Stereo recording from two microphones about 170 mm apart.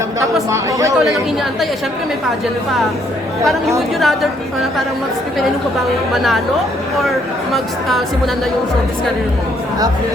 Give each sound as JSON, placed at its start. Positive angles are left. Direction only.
{"t": 0.5, "sound": "speech", "side_deg": -20}
{"t": 3.8, "sound": "speech", "side_deg": 0}
{"t": 6.9, "sound": "speech", "side_deg": 0}